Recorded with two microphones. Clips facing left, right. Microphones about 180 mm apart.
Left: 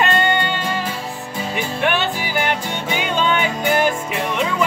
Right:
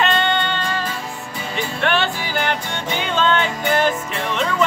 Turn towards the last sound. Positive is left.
turn(degrees=10)  # may be behind; listen again after turning